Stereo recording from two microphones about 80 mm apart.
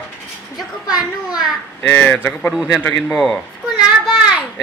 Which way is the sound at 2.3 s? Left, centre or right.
Centre.